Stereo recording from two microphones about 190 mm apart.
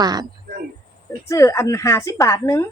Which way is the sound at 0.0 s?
20° right (ahead or behind).